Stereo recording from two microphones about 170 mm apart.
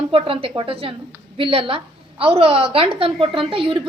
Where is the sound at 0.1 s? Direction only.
30° right (ahead or behind).